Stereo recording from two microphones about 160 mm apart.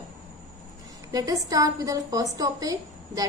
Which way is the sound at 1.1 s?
20° right (ahead or behind).